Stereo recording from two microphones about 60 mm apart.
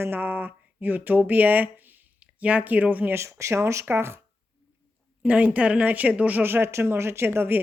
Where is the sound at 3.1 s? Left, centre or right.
Right.